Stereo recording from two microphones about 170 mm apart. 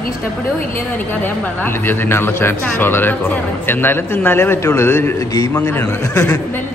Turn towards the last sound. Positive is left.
turn(degrees=15)  # may be behind; listen again after turning